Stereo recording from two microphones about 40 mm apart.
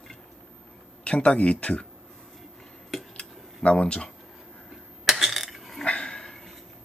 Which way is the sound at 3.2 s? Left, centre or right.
Left.